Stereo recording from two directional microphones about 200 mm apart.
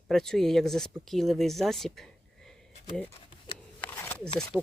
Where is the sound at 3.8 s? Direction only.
10° left (ahead or behind).